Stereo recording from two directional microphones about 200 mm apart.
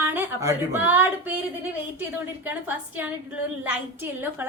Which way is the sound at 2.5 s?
10° right (ahead or behind).